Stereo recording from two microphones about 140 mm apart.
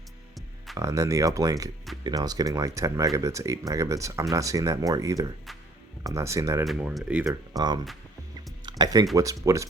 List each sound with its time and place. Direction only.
0.8 s speech: 20° right (ahead or behind)
6.7 s speech: 5° right (ahead or behind)
7.3 s speech: 30° right (ahead or behind)